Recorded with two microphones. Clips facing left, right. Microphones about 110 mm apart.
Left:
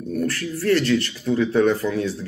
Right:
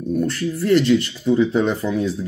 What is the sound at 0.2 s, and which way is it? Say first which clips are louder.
Speech: right 3 dB; 20° right (ahead or behind).